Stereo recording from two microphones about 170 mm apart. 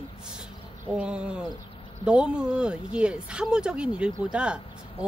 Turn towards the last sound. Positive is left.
turn(degrees=-5)  # may be behind; listen again after turning